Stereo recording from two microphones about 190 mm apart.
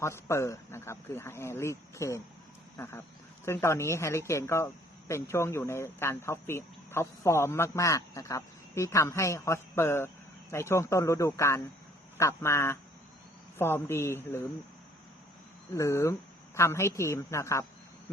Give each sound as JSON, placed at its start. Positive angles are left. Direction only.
{"t": 0.0, "sound": "speech", "side_deg": 15}
{"t": 2.7, "sound": "a sound", "side_deg": 10}
{"t": 3.4, "sound": "speech", "side_deg": 15}
{"t": 15.7, "sound": "speech", "side_deg": 15}